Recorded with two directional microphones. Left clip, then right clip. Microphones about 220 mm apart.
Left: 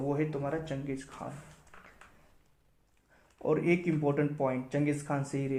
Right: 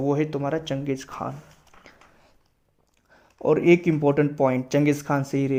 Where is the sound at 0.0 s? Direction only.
40° right (ahead or behind).